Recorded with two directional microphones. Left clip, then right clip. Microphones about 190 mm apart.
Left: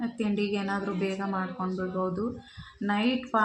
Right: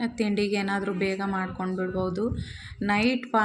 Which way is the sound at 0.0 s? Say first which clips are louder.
Right 3 dB; 25° right (ahead or behind).